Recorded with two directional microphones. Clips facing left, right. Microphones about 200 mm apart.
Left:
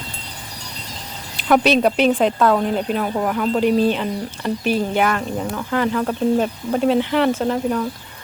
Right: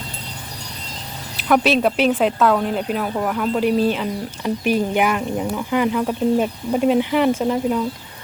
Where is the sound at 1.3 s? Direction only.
Centre (ahead or behind).